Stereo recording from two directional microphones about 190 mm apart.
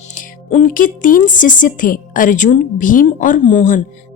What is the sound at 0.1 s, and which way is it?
A woman's voice, 40° left (ahead or behind).